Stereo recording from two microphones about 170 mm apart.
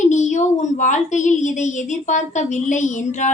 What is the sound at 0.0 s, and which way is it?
A woman's voice, 45° left (ahead or behind).